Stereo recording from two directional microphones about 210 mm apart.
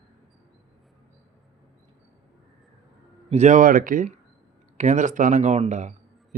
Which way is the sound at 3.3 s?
35° right (ahead or behind).